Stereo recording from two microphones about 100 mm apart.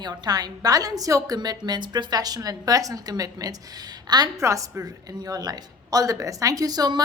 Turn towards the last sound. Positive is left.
turn(degrees=-40)  # may be behind; listen again after turning